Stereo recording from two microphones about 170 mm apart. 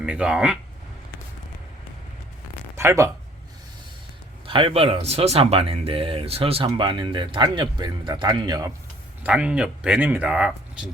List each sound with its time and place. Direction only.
0.0 s speech: 5° right (ahead or behind)
2.7 s speech: 15° right (ahead or behind)
4.4 s speech: 30° right (ahead or behind)
9.2 s speech: 5° right (ahead or behind)